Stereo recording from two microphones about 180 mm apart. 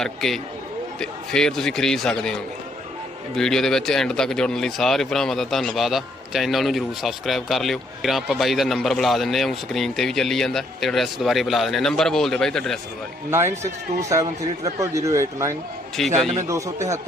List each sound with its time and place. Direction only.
0.0 s speech: centre (ahead or behind)
13.3 s a man's voice: 15° right (ahead or behind)
16.0 s speech: centre (ahead or behind)
16.5 s a man's voice: 15° right (ahead or behind)